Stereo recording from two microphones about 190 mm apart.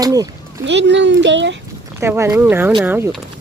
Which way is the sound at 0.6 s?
70° right (ahead or behind).